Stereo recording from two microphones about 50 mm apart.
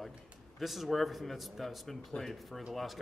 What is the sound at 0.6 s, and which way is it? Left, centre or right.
Speech, centre.